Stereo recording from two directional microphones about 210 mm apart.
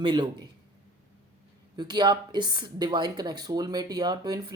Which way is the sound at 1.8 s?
20° right (ahead or behind).